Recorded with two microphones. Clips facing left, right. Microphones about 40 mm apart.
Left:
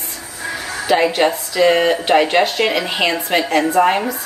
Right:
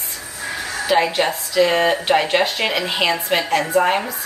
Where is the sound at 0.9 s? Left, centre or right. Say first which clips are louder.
Left 3 dB; centre.